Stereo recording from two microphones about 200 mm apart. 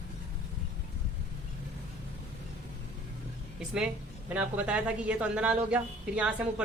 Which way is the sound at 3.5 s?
5° right (ahead or behind).